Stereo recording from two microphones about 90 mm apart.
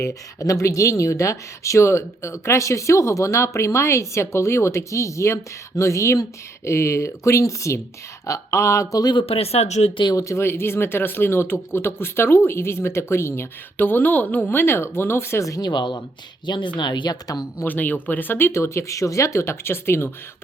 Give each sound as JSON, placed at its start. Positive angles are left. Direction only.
{"t": 0.0, "sound": "speech", "side_deg": 35}
{"t": 9.1, "sound": "speech", "side_deg": 90}
{"t": 10.2, "sound": "speech", "side_deg": 30}
{"t": 15.7, "sound": "speech", "side_deg": 55}
{"t": 17.6, "sound": "speech", "side_deg": 20}